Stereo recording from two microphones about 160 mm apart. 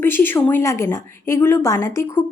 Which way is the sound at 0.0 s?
15° left (ahead or behind).